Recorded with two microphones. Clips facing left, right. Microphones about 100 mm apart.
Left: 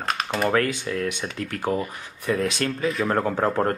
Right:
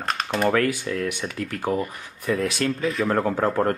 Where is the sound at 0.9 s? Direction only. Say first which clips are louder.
Even; 35° left (ahead or behind).